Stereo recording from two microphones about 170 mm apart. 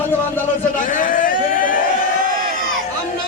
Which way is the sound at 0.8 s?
50° left (ahead or behind).